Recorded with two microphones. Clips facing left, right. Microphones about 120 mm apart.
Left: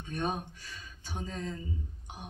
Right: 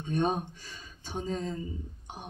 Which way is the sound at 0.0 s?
25° right (ahead or behind).